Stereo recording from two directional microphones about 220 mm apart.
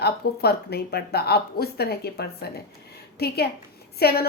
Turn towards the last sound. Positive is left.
turn(degrees=45)  # may be behind; listen again after turning